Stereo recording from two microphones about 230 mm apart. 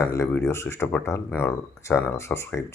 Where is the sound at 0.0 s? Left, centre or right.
Centre.